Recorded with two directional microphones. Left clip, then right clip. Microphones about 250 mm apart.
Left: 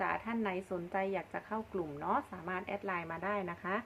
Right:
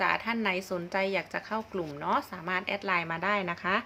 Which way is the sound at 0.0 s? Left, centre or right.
Centre.